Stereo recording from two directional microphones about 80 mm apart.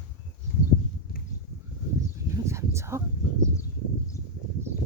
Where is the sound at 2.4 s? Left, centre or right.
Right.